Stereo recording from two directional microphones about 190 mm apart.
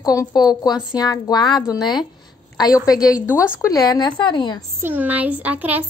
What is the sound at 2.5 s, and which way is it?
Speech, 20° left (ahead or behind).